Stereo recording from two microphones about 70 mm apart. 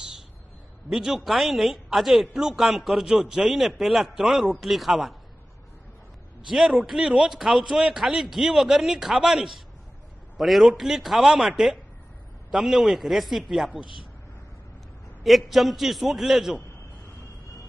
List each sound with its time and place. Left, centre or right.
0.8 s a man's voice: centre
6.4 s a man's voice: centre
15.2 s a man's voice: centre